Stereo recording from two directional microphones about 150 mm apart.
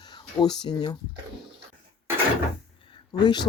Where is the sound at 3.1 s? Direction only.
30° left (ahead or behind).